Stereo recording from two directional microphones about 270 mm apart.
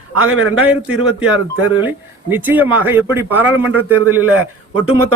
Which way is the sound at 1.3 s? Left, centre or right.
Right.